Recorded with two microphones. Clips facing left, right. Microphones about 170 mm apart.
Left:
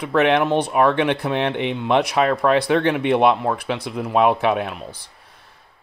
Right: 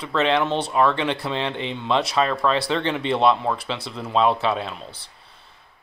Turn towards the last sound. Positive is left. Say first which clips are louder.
# left 4 dB
turn(degrees=10)  # may be behind; listen again after turning